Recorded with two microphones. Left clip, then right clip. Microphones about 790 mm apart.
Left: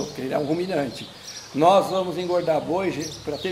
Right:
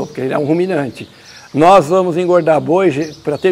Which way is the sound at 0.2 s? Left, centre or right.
Right.